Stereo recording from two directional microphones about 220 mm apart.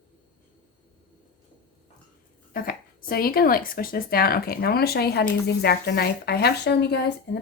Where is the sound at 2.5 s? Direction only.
40° left (ahead or behind).